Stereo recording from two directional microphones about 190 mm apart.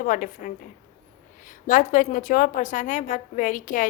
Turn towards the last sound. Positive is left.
turn(degrees=45)  # may be behind; listen again after turning